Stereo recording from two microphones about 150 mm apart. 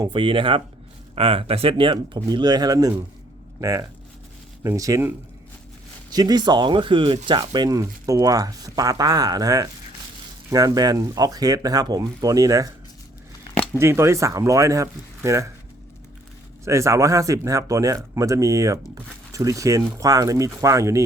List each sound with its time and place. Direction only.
0.0 s speech: 35° right (ahead or behind)
13.7 s speech: 15° right (ahead or behind)
16.6 s speech: 20° right (ahead or behind)